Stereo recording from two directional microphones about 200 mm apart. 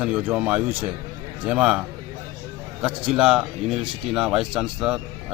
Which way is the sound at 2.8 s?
5° right (ahead or behind).